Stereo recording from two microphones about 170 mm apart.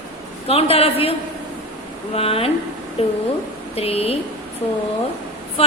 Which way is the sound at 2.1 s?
35° left (ahead or behind).